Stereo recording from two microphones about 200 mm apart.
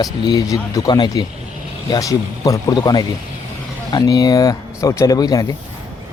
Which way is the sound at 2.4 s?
15° left (ahead or behind).